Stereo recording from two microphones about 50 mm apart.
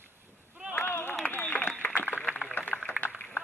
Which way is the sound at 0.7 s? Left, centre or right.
Left.